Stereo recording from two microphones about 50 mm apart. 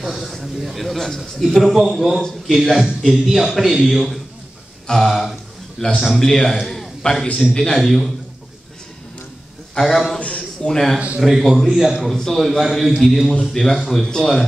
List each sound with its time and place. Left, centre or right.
0.0 s a man's voice: centre
6.6 s a sound: centre
7.0 s a man's voice: centre
9.8 s a man's voice: centre
10.1 s a sound: left
10.7 s a man's voice: centre
13.5 s a man's voice: centre